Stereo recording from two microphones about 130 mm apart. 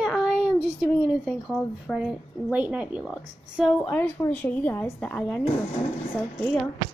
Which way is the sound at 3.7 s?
15° left (ahead or behind).